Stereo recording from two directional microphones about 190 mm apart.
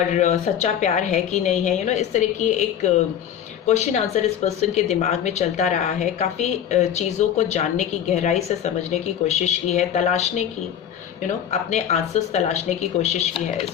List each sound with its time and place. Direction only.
0.1 s speech: 35° left (ahead or behind)
11.7 s speech: 35° left (ahead or behind)